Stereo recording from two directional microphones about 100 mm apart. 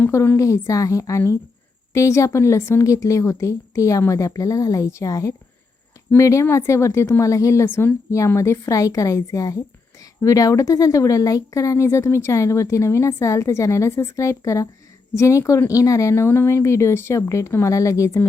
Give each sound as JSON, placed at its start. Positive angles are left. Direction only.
{"t": 0.0, "sound": "a woman's voice", "side_deg": 25}